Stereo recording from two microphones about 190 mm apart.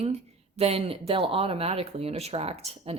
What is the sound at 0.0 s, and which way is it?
Speech, 35° right (ahead or behind).